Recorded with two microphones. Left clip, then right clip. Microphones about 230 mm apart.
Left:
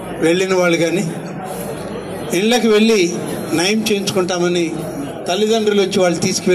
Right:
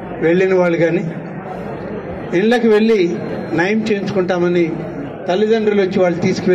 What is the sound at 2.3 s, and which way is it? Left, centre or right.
A man's voice, left.